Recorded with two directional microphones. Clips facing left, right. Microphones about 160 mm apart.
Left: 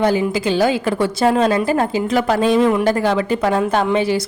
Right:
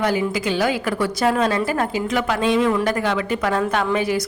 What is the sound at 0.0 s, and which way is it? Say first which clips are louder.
A woman's voice: left 4 dB; 30° left (ahead or behind).